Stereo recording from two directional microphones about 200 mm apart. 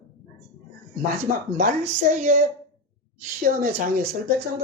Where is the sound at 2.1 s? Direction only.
40° right (ahead or behind).